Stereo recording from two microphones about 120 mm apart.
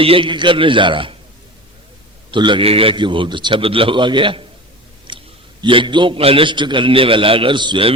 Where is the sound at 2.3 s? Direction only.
40° right (ahead or behind).